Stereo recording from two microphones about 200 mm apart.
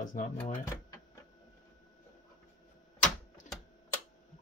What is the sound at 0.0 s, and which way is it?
Speech, 40° left (ahead or behind).